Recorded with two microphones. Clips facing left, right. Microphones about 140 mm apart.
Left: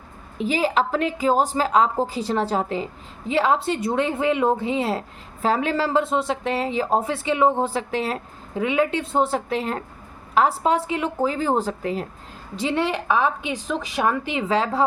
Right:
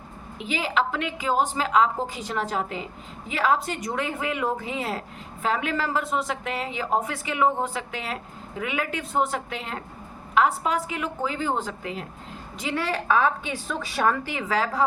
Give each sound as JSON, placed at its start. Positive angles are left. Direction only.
{"t": 0.3, "sound": "a woman's voice", "side_deg": 35}
{"t": 12.5, "sound": "a woman's voice", "side_deg": 25}